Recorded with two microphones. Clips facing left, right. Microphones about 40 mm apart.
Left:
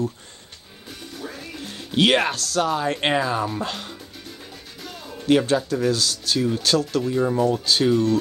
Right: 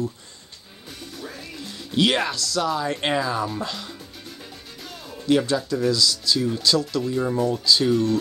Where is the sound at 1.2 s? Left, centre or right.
Centre.